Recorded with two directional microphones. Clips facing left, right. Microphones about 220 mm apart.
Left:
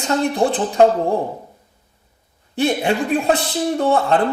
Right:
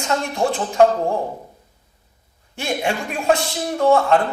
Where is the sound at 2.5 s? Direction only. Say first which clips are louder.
Left 5 dB; 35° left (ahead or behind).